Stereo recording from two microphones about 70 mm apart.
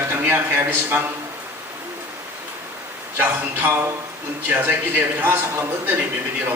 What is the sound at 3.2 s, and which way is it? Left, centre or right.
A man's voice, right.